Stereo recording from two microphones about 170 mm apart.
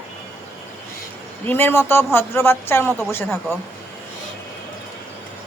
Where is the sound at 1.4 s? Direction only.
10° left (ahead or behind).